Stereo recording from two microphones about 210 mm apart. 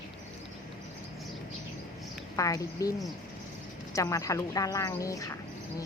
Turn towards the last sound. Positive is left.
turn(degrees=15)  # may be behind; listen again after turning